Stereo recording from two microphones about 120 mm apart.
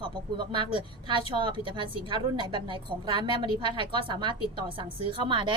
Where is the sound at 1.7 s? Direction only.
45° right (ahead or behind).